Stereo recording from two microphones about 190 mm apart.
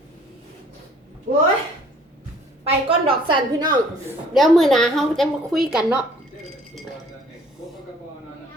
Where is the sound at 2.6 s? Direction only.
30° right (ahead or behind).